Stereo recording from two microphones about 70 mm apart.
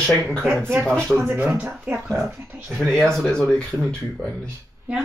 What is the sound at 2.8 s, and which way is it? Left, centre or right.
Speech, centre.